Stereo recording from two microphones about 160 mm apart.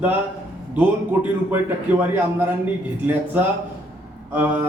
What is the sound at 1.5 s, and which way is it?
Speech, 15° right (ahead or behind).